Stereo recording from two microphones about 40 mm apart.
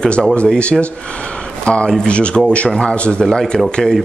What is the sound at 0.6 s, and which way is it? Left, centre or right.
Speech, left.